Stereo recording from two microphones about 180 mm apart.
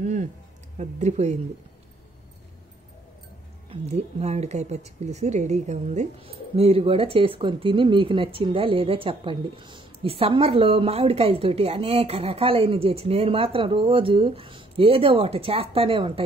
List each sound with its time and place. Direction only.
0.0 s a sound: 40° right (ahead or behind)
0.7 s speech: 40° right (ahead or behind)
3.7 s speech: 35° right (ahead or behind)